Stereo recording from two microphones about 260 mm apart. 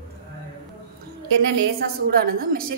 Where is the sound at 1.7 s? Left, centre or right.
Right.